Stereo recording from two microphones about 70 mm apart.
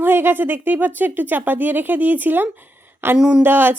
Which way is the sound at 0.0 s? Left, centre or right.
Right.